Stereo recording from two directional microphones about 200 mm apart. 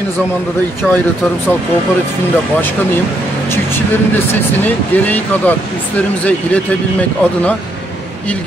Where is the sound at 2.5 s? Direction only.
10° left (ahead or behind).